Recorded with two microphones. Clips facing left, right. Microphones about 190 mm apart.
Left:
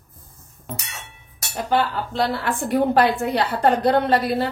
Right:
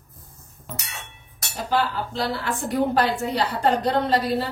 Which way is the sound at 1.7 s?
55° left (ahead or behind).